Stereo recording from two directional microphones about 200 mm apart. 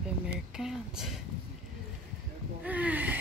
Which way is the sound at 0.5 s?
5° right (ahead or behind).